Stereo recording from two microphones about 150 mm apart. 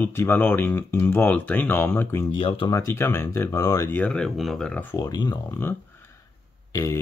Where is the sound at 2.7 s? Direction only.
15° left (ahead or behind).